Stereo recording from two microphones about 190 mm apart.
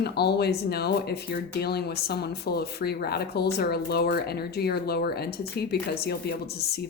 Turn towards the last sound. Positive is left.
turn(degrees=55)  # may be behind; listen again after turning